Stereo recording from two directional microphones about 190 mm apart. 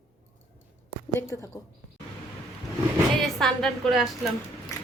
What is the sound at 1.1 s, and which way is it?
Speech, 15° left (ahead or behind).